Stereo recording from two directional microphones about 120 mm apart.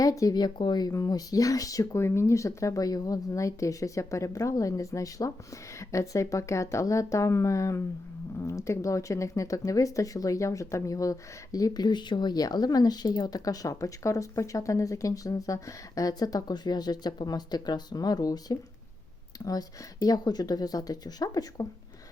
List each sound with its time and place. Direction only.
0.0 s speech: 30° left (ahead or behind)